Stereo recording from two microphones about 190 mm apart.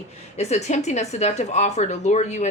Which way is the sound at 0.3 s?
35° left (ahead or behind).